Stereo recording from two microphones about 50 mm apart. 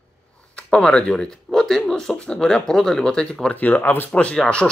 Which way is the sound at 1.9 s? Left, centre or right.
Centre.